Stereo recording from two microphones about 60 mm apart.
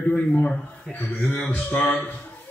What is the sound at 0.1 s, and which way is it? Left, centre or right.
A man's voice, centre.